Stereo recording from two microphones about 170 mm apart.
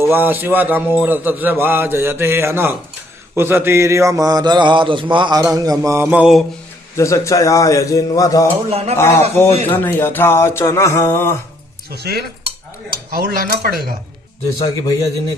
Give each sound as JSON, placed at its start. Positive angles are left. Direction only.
{"t": 0.1, "sound": "a man's voice", "side_deg": -10}
{"t": 3.3, "sound": "mantra", "side_deg": -15}
{"t": 6.9, "sound": "a man's voice", "side_deg": 20}
{"t": 9.0, "sound": "a sound", "side_deg": 15}
{"t": 11.9, "sound": "cutlery", "side_deg": -70}
{"t": 13.1, "sound": "speech", "side_deg": -65}
{"t": 14.6, "sound": "a man's voice", "side_deg": 20}